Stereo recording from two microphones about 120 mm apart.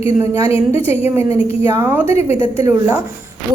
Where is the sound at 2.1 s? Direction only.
60° left (ahead or behind).